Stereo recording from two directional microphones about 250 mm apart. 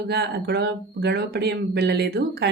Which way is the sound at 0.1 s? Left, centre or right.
Right.